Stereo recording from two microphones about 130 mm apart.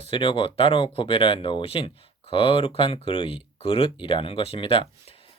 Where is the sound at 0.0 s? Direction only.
45° left (ahead or behind).